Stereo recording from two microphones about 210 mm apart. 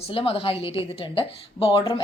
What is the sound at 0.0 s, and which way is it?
A woman's voice, 25° left (ahead or behind).